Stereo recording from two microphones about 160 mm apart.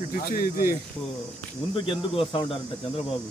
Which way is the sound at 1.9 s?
30° left (ahead or behind).